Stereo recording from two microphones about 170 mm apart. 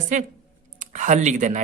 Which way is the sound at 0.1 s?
45° right (ahead or behind).